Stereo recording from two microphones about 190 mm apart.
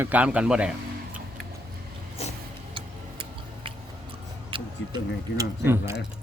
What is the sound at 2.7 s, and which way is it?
Tick-tock, 25° right (ahead or behind).